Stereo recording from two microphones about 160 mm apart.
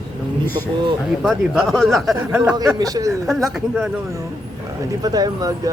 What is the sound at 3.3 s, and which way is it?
Speech, centre (ahead or behind).